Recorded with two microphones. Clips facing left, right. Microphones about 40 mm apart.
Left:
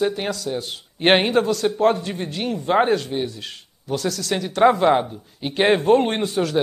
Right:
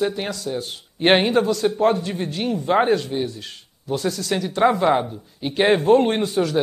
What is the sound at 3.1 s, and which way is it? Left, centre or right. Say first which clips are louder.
Speech: even; left.